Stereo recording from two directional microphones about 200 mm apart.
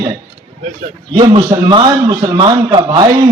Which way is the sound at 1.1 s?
25° right (ahead or behind).